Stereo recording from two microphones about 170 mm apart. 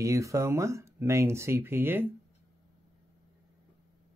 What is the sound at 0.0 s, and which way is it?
Speech, 20° right (ahead or behind).